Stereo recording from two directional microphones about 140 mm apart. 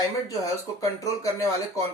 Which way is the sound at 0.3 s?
25° left (ahead or behind).